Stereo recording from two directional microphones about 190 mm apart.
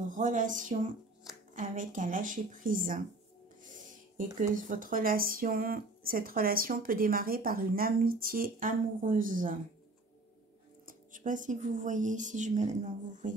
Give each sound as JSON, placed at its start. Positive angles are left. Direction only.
{"t": 0.1, "sound": "speech", "side_deg": -45}
{"t": 3.6, "sound": "music", "side_deg": -45}
{"t": 4.4, "sound": "speech", "side_deg": -45}
{"t": 10.9, "sound": "speech", "side_deg": -45}